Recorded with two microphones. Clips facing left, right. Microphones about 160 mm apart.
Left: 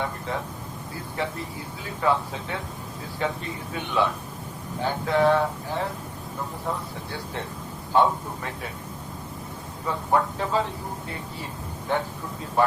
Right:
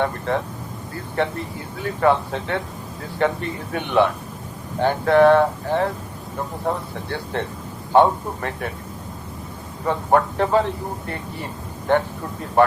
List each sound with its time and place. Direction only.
0.3 s speech: 65° right (ahead or behind)
9.8 s speech: 65° right (ahead or behind)
11.9 s speech: 60° right (ahead or behind)